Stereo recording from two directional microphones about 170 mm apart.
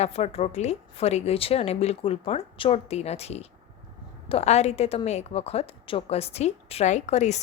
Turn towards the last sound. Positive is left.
turn(degrees=40)  # may be behind; listen again after turning